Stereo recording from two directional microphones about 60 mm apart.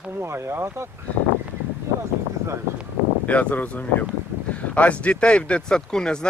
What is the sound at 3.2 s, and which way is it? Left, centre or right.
Speech, left.